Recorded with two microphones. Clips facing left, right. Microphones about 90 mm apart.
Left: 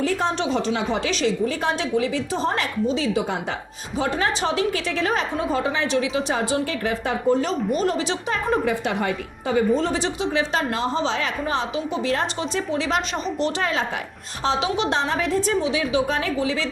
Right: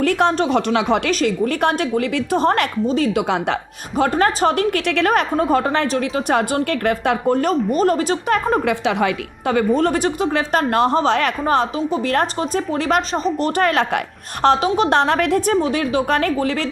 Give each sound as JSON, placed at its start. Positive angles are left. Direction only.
{"t": 0.0, "sound": "speech", "side_deg": -65}
{"t": 0.3, "sound": "a woman's voice", "side_deg": -50}
{"t": 0.7, "sound": "a woman's voice", "side_deg": -70}
{"t": 2.8, "sound": "a woman's voice", "side_deg": -50}
{"t": 3.2, "sound": "a woman's voice", "side_deg": -80}
{"t": 5.4, "sound": "a woman's voice", "side_deg": -50}
{"t": 7.7, "sound": "a woman's voice", "side_deg": -45}
{"t": 8.6, "sound": "a woman's voice", "side_deg": -90}
{"t": 14.4, "sound": "a woman's voice", "side_deg": -50}